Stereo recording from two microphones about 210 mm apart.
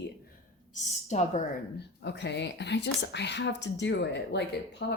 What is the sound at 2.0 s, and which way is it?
Speech, 55° left (ahead or behind).